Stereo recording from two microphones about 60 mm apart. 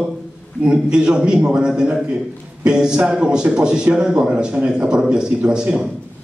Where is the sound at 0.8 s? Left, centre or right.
Centre.